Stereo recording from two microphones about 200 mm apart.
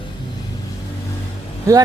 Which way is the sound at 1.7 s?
15° right (ahead or behind).